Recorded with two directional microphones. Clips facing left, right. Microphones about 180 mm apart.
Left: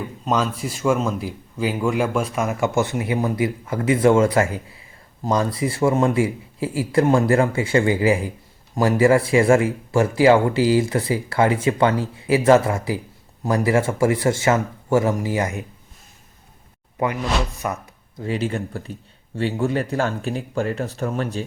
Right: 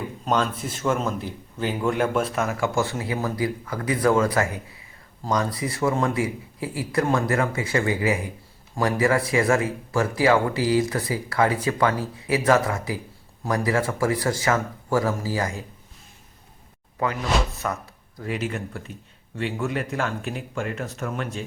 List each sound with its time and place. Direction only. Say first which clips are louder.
0.6 s speech: left 4 dB; 10° left (ahead or behind)
2.5 s speech: left 3 dB; 20° left (ahead or behind)
17.6 s speech: left 2 dB; 15° left (ahead or behind)
18.2 s speech: left 4 dB; 30° left (ahead or behind)